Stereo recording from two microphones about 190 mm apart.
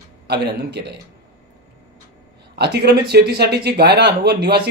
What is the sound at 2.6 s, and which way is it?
Speech, 60° right (ahead or behind).